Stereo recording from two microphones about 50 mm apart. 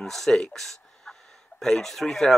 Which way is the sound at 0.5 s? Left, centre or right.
Centre.